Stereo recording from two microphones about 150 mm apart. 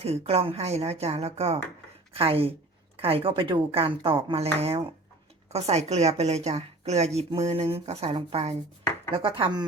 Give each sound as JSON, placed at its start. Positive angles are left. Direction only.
{"t": 0.0, "sound": "a woman's voice", "side_deg": -45}